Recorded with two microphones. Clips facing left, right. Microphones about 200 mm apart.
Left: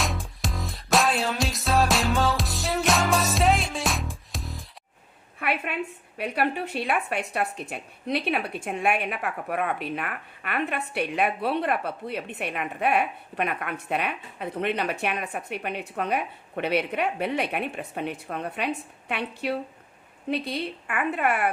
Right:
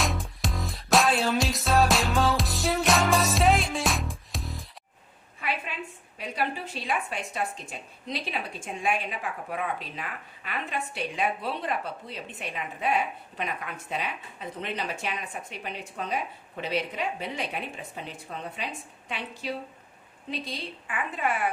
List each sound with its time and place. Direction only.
0.0 s music: centre (ahead or behind)
5.4 s a woman's voice: 60° left (ahead or behind)